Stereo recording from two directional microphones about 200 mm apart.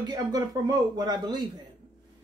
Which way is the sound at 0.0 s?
20° right (ahead or behind).